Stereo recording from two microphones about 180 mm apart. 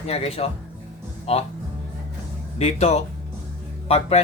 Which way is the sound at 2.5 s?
35° left (ahead or behind).